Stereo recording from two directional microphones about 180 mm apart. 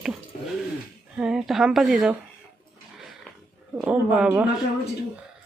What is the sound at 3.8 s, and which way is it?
Speech, 5° right (ahead or behind).